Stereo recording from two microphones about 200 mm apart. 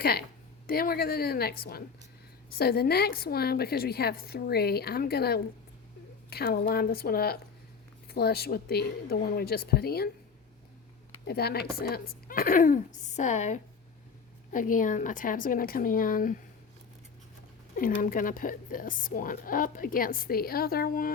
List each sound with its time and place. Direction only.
0.0 s speech: 50° left (ahead or behind)
11.3 s speech: 50° left (ahead or behind)
17.7 s speech: 45° left (ahead or behind)